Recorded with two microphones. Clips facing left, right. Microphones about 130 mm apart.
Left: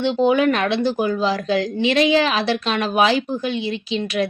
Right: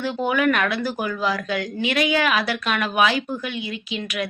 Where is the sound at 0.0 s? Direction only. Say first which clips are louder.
Left 5 dB; 25° left (ahead or behind).